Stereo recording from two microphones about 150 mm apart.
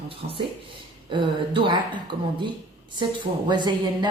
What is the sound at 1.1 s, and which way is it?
Speech, 35° right (ahead or behind).